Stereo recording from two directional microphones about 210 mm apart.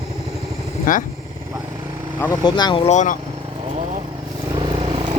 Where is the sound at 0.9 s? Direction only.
40° left (ahead or behind).